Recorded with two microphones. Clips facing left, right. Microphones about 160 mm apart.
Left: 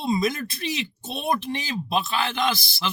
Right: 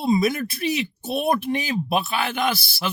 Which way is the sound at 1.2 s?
55° right (ahead or behind).